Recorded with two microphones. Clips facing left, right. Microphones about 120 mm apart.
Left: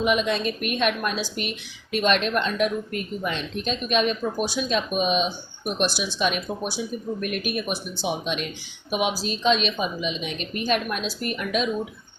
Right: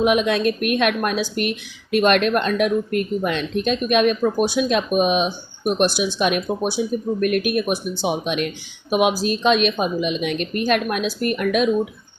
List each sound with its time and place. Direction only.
0.0 s a woman's voice: 55° right (ahead or behind)